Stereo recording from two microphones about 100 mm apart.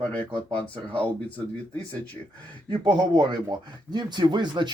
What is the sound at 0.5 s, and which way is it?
Speech, 15° left (ahead or behind).